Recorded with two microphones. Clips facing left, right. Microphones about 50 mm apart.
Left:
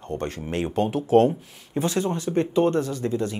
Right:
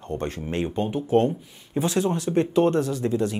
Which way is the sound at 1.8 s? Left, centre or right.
Centre.